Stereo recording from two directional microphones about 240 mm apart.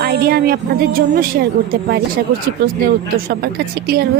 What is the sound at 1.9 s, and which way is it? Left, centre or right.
Speech, right.